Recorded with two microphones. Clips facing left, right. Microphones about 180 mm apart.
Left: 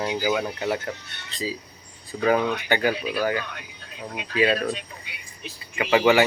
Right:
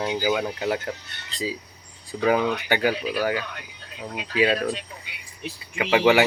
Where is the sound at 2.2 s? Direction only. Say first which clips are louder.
Even; 10° right (ahead or behind).